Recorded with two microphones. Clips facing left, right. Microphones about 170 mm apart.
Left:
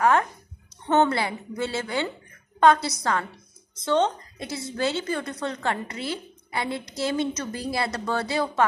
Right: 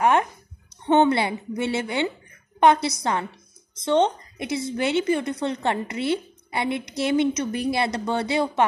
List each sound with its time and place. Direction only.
0.0 s a child's voice: 20° right (ahead or behind)